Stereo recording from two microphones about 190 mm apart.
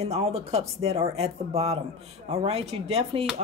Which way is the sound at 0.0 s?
35° right (ahead or behind).